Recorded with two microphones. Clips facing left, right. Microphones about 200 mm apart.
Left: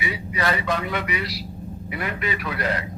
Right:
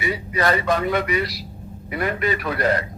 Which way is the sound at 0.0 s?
45° right (ahead or behind).